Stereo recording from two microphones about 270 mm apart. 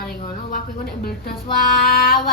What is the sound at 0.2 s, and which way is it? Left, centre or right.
Speech, left.